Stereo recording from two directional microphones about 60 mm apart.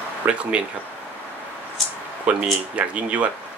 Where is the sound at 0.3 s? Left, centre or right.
Centre.